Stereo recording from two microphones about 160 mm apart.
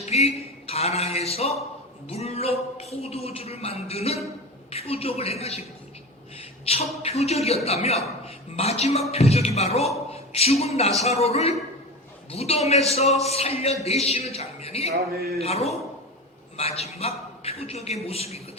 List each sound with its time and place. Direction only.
0.0 s music: 40° left (ahead or behind)
2.0 s a man's voice: 40° left (ahead or behind)